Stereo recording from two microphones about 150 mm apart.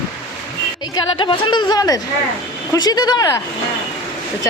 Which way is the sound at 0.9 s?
30° left (ahead or behind).